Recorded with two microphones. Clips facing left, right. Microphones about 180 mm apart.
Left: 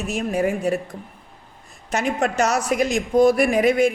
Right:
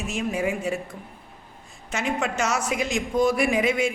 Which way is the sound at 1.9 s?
40° left (ahead or behind).